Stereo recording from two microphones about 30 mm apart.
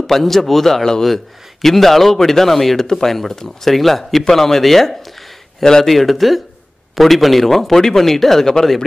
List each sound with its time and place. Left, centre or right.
0.0 s speech: centre
5.6 s speech: centre
5.9 s speech: centre